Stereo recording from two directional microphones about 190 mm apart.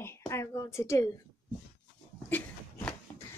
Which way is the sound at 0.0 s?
15° left (ahead or behind).